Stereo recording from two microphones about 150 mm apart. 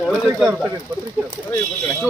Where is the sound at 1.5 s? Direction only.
15° left (ahead or behind).